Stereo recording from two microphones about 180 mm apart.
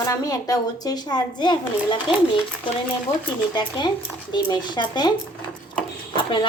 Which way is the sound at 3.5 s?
25° left (ahead or behind).